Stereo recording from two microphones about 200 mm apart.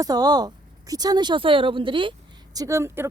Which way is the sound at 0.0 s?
20° right (ahead or behind).